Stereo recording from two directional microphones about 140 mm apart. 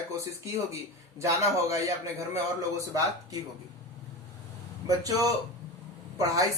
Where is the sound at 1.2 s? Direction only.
20° right (ahead or behind).